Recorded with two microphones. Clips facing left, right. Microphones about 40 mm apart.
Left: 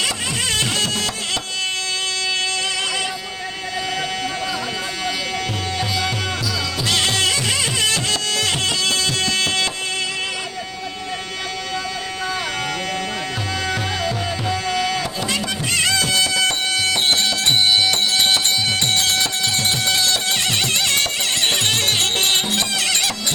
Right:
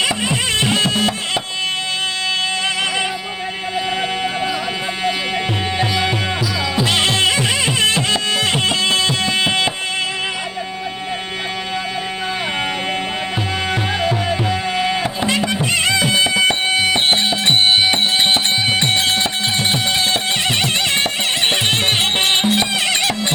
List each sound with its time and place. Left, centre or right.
0.0 s music: right
6.7 s music: right
13.7 s music: right